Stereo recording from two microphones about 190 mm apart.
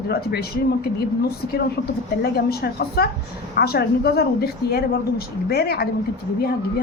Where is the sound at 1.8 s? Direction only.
55° left (ahead or behind).